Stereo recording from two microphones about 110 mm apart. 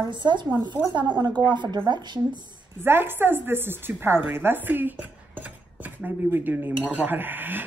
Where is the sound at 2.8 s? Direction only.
20° right (ahead or behind).